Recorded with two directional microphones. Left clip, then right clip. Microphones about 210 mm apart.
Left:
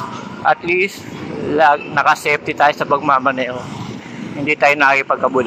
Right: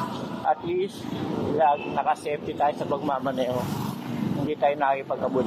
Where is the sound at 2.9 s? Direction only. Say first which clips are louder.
Left 12 dB; 40° left (ahead or behind).